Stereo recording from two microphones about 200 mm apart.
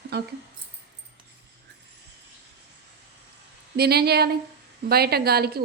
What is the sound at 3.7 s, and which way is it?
Speech, 50° right (ahead or behind).